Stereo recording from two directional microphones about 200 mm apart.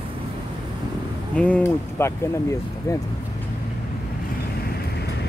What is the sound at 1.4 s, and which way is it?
Speech, 10° left (ahead or behind).